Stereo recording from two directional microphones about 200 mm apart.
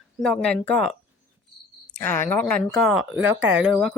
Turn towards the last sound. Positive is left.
turn(degrees=0)  # may be behind; listen again after turning